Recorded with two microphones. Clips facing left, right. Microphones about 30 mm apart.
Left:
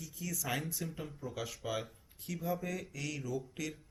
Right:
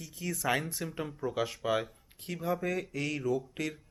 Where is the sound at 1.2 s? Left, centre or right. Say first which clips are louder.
Right 11 dB; right.